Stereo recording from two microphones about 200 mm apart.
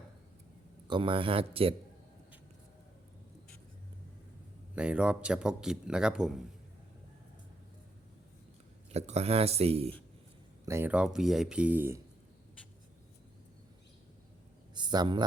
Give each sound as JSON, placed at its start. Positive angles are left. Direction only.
{"t": 0.9, "sound": "speech", "side_deg": -25}
{"t": 4.7, "sound": "speech", "side_deg": -5}
{"t": 8.9, "sound": "speech", "side_deg": -30}
{"t": 10.7, "sound": "speech", "side_deg": -10}
{"t": 14.8, "sound": "a man's voice", "side_deg": -20}